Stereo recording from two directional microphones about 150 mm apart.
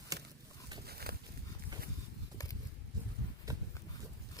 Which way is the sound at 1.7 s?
25° right (ahead or behind).